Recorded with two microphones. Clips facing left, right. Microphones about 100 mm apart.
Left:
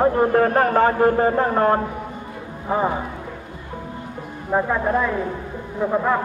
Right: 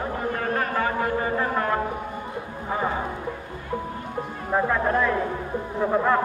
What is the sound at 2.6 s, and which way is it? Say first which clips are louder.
Speech: left 6 dB; 25° left (ahead or behind).